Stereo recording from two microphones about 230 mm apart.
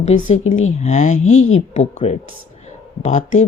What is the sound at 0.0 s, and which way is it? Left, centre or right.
Speech, left.